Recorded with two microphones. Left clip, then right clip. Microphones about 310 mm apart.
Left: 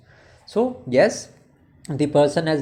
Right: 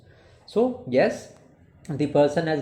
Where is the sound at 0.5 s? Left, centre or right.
Left.